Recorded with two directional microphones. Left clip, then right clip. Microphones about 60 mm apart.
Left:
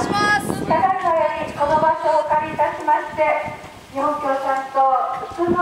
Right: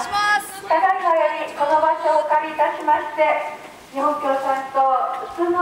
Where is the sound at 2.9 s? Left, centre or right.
Centre.